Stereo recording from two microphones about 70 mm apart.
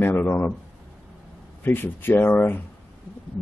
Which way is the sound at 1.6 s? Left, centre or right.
Left.